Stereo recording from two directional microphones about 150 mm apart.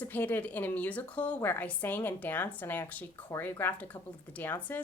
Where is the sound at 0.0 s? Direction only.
10° left (ahead or behind).